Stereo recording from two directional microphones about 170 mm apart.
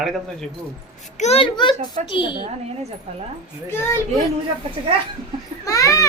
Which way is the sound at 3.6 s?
15° left (ahead or behind).